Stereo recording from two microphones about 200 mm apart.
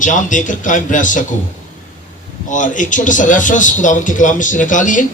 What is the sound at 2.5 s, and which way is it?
Speech, 40° left (ahead or behind).